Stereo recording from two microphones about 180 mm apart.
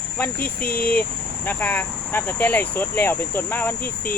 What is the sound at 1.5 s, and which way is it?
Speech, 10° left (ahead or behind).